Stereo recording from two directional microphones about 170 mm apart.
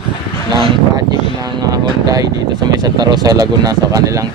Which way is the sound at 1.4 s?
20° right (ahead or behind).